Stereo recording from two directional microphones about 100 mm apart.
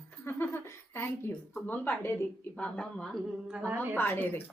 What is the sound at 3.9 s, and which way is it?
Speech, 20° left (ahead or behind).